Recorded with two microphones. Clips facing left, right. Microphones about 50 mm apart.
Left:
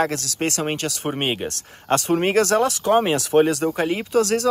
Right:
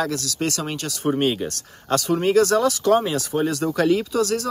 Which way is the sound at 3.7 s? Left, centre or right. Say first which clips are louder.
Right 1 dB; left.